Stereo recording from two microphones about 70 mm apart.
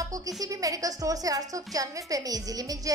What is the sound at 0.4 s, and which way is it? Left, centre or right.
A woman's voice, right.